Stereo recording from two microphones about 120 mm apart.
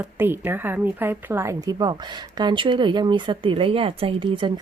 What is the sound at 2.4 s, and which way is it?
Speech, 40° right (ahead or behind).